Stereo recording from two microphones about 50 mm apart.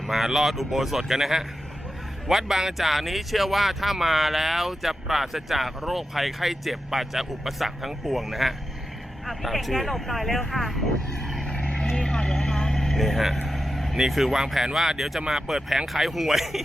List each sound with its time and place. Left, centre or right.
0.1 s speech: centre
11.2 s vehicle: centre
11.5 s vehicle: left; by 13.9 s centre
13.9 s speech: centre